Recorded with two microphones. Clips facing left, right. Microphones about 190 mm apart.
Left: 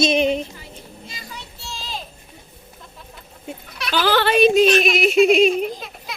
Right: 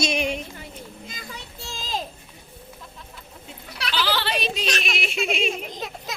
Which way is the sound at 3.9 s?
50° left (ahead or behind).